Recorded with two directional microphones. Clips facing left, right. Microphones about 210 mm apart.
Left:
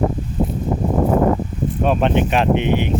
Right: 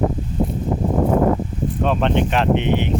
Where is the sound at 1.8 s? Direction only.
10° left (ahead or behind).